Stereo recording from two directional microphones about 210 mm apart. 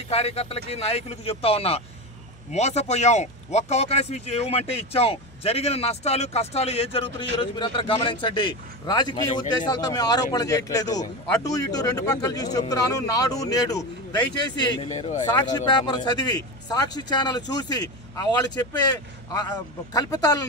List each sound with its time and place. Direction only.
0.1 s speech: 30° left (ahead or behind)
14.9 s speech: 35° left (ahead or behind)
15.5 s speech: 20° left (ahead or behind)